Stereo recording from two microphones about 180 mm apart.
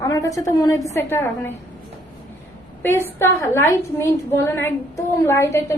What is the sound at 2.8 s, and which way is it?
A woman's voice, 15° left (ahead or behind).